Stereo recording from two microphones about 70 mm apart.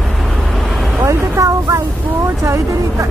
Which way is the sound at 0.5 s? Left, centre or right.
Centre.